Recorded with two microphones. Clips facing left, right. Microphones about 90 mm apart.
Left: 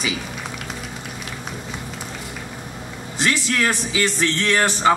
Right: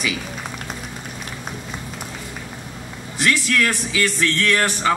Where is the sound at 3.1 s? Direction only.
20° left (ahead or behind).